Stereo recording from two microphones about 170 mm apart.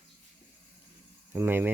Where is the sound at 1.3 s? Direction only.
10° right (ahead or behind).